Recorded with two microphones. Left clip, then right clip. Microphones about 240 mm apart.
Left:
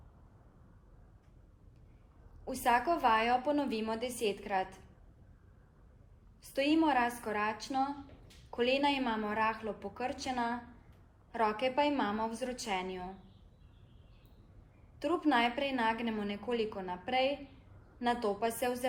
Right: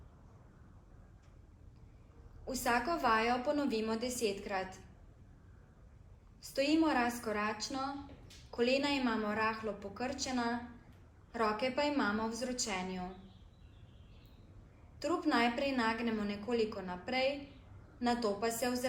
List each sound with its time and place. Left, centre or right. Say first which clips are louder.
2.5 s a woman's voice: left 4 dB; left
6.4 s a woman's voice: left 2 dB; left
14.9 s a woman's voice: left 2 dB; left